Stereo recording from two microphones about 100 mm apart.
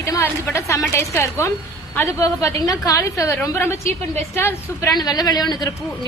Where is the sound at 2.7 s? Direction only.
35° left (ahead or behind).